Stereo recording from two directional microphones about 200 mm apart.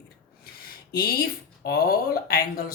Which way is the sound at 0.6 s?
50° left (ahead or behind).